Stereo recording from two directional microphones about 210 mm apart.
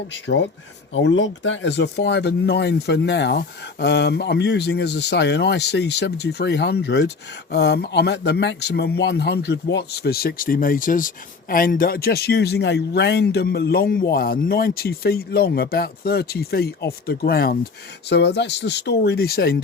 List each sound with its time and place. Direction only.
0.1 s speech: 55° left (ahead or behind)